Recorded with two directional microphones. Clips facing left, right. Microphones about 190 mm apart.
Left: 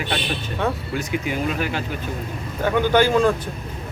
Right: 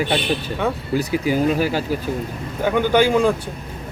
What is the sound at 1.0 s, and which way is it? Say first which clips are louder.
Speech: right 6 dB; 35° right (ahead or behind).